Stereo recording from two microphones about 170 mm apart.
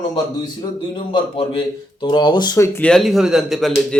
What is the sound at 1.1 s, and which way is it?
A man's voice, 30° left (ahead or behind).